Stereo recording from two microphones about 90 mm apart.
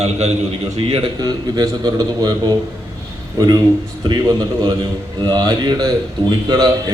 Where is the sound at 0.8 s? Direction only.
90° right.